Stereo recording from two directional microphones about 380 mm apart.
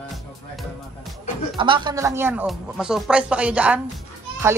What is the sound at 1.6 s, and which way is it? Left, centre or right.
Speech, centre.